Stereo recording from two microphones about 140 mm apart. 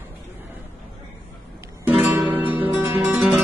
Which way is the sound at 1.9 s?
10° right (ahead or behind).